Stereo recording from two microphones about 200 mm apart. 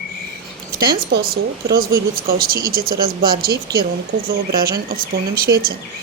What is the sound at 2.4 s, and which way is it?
Speech, 45° right (ahead or behind).